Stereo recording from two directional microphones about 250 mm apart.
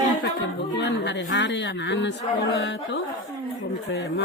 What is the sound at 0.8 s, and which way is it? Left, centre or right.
Speech, left.